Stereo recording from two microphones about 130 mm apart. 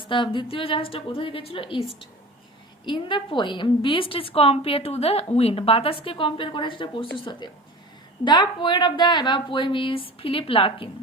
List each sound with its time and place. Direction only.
0.1 s a woman's voice: 40° left (ahead or behind)